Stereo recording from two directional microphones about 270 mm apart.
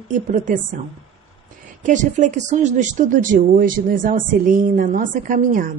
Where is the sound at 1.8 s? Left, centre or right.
Right.